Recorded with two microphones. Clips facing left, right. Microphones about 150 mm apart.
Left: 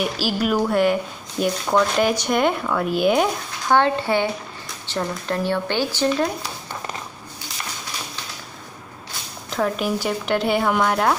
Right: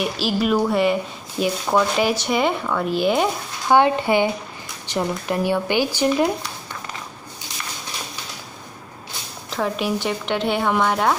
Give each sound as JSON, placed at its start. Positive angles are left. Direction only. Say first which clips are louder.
{"t": 0.0, "sound": "speech", "louder": "right 1 dB", "side_deg": 0}
{"t": 3.6, "sound": "speech", "louder": "right 2 dB", "side_deg": -15}
{"t": 9.5, "sound": "speech", "louder": "left 1 dB", "side_deg": 0}